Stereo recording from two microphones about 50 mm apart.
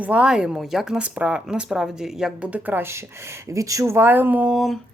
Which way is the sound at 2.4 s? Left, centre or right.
Right.